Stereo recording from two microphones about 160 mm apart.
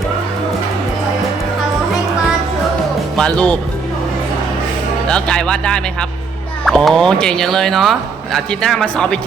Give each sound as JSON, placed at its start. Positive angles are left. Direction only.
{"t": 3.2, "sound": "speech", "side_deg": 5}
{"t": 5.0, "sound": "a man's voice", "side_deg": 5}